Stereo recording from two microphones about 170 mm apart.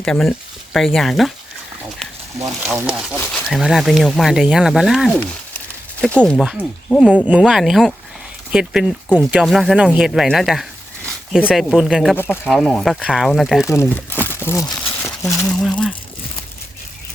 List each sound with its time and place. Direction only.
0.0 s speech: 5° left (ahead or behind)
2.7 s speech: 5° right (ahead or behind)
3.2 s speech: 15° left (ahead or behind)
3.5 s speech: centre (ahead or behind)
6.4 s speech: 5° right (ahead or behind)
12.1 s speech: 15° left (ahead or behind)
13.7 s speech: 15° left (ahead or behind)
14.3 s crumpling: 15° left (ahead or behind)
15.0 s a sound: 15° left (ahead or behind)
15.5 s speech: 5° left (ahead or behind)